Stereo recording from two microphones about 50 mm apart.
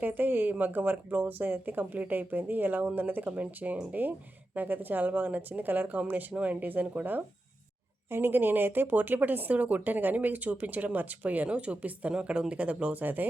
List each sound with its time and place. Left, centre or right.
0.0 s speech: right
11.4 s speech: right